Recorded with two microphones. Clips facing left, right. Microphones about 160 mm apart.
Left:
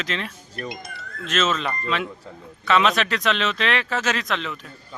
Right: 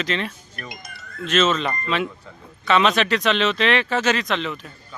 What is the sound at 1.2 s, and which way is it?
Speech, centre (ahead or behind).